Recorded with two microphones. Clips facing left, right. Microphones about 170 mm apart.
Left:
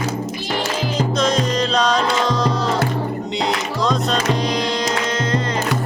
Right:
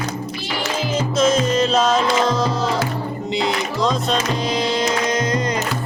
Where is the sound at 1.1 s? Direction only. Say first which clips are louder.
Right 4 dB; 5° right (ahead or behind).